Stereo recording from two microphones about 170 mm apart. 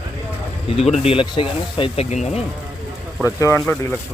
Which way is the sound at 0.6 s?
35° left (ahead or behind).